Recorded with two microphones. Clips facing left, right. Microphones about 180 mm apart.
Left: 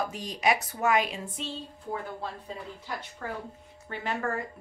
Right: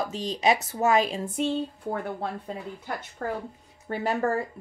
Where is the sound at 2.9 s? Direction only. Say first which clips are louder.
Right 5 dB; 45° right (ahead or behind).